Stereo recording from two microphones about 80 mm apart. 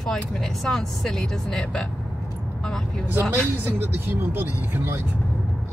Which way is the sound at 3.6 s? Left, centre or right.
Right.